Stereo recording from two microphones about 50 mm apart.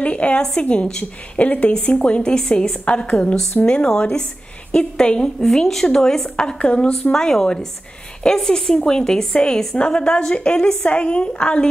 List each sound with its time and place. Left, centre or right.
0.0 s a woman's voice: left
5.4 s a woman's voice: centre; by 11.6 s left